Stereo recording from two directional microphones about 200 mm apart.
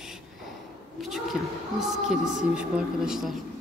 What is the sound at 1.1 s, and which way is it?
A woman's voice, centre (ahead or behind).